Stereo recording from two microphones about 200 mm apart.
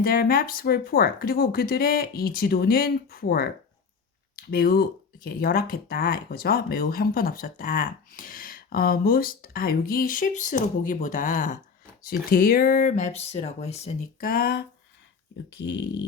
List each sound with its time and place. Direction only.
0.0 s speech: 45° left (ahead or behind)
14.3 s speech: 50° left (ahead or behind)
15.4 s speech: 60° left (ahead or behind)